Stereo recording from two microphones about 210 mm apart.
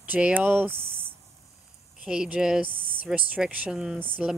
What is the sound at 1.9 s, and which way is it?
Speech, 5° right (ahead or behind).